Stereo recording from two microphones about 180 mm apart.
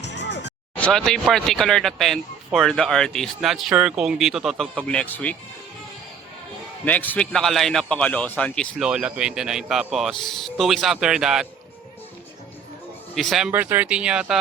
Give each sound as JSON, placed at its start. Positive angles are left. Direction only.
{"t": 0.0, "sound": "music", "side_deg": 75}
{"t": 0.8, "sound": "speech", "side_deg": 5}
{"t": 6.8, "sound": "a man's voice", "side_deg": 10}
{"t": 8.8, "sound": "speech", "side_deg": -5}
{"t": 13.1, "sound": "speech", "side_deg": 0}